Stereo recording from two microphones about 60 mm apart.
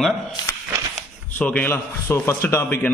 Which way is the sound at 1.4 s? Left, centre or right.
Left.